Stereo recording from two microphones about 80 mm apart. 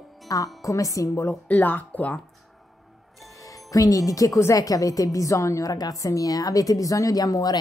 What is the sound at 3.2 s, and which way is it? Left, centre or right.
Speech, left.